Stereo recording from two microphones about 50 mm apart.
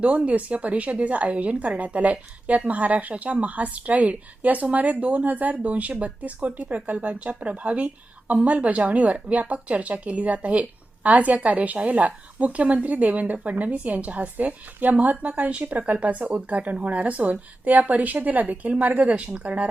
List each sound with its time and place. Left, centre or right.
0.0 s speech: right